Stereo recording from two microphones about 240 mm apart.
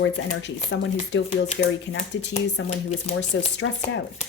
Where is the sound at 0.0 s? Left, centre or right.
Left.